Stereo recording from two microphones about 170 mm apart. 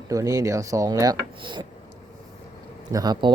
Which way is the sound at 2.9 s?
25° right (ahead or behind).